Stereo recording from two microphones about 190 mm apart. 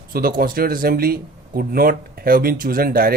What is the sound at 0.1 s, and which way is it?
Speech, 50° right (ahead or behind).